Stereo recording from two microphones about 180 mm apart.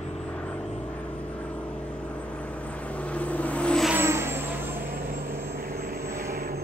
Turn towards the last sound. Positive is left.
turn(degrees=-55)  # may be behind; listen again after turning